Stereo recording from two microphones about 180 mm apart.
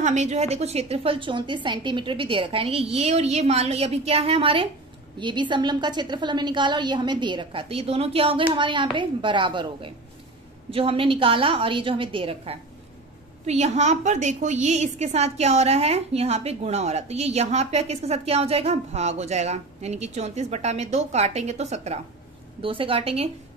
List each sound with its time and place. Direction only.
0.0 s a woman's voice: 40° right (ahead or behind)